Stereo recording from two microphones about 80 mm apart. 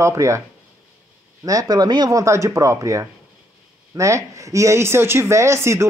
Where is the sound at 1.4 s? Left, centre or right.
Right.